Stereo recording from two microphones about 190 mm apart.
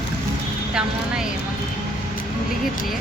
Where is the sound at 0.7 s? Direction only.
5° right (ahead or behind).